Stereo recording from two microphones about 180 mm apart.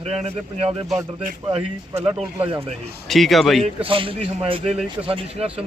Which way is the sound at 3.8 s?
30° right (ahead or behind).